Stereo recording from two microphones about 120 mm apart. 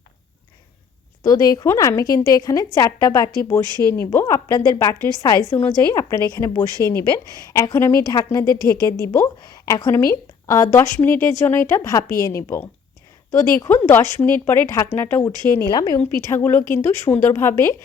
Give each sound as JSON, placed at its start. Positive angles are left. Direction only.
{"t": 1.2, "sound": "a woman's voice", "side_deg": 30}
{"t": 15.7, "sound": "a woman's voice", "side_deg": 35}
{"t": 16.4, "sound": "a woman's voice", "side_deg": 20}